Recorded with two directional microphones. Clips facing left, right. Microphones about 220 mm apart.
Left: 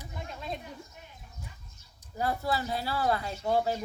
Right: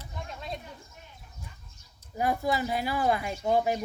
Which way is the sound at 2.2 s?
15° right (ahead or behind).